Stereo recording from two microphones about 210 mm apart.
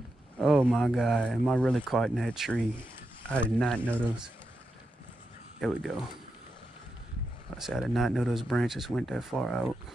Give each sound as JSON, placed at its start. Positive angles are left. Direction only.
{"t": 0.4, "sound": "speech", "side_deg": 0}
{"t": 5.6, "sound": "speech", "side_deg": 0}
{"t": 7.5, "sound": "speech", "side_deg": 0}